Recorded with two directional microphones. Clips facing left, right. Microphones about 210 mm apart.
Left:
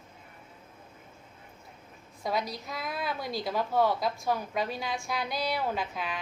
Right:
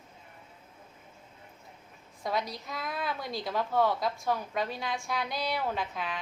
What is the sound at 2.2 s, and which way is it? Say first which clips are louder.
A woman's voice: left 1 dB; 5° left (ahead or behind).